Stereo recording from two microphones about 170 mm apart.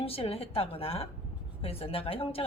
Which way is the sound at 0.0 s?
35° left (ahead or behind).